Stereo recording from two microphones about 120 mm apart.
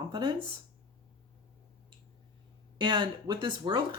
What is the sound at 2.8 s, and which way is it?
Speech, 40° right (ahead or behind).